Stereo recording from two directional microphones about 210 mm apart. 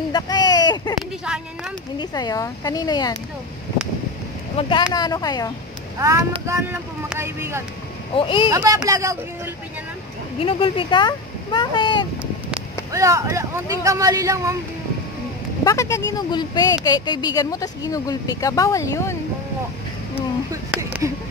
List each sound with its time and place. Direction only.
0.1 s speech: 20° left (ahead or behind)
1.2 s speech: 5° right (ahead or behind)
2.0 s speech: 20° left (ahead or behind)
4.6 s speech: 25° left (ahead or behind)
5.9 s speech: 15° right (ahead or behind)
8.1 s speech: 25° left (ahead or behind)
8.5 s speech: 15° right (ahead or behind)
10.4 s speech: 25° left (ahead or behind)
12.9 s speech: 15° right (ahead or behind)
15.6 s speech: 15° left (ahead or behind)
20.7 s a sound: 5° right (ahead or behind)